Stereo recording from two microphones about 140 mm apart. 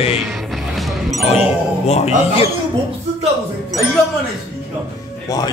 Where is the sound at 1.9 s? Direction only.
50° left (ahead or behind).